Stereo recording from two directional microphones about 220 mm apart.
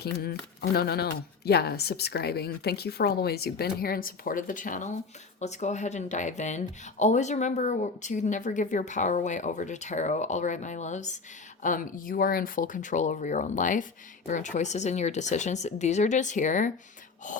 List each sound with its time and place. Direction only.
0.0 s speech: 45° left (ahead or behind)